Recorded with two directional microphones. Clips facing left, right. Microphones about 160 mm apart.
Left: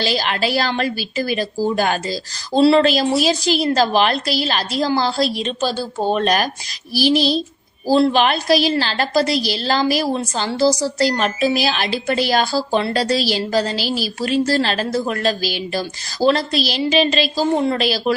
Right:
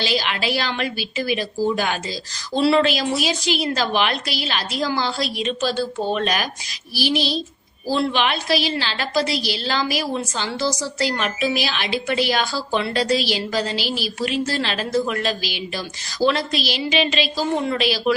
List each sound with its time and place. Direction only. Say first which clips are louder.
0.0 s a woman's voice: left 3 dB; 40° left (ahead or behind)